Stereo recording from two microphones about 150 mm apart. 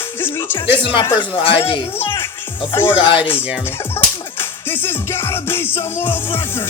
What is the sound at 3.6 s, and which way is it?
Speech, 15° left (ahead or behind).